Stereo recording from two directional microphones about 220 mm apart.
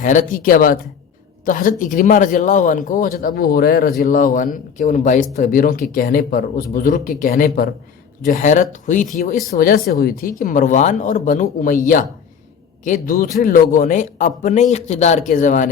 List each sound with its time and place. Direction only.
0.0 s a man's voice: 35° left (ahead or behind)
12.8 s a man's voice: 35° left (ahead or behind)